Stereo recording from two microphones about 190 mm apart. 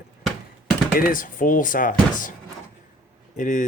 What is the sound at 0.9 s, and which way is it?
Speech, 45° left (ahead or behind).